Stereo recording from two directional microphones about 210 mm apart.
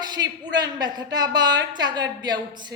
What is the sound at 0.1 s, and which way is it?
A woman's voice, 20° right (ahead or behind).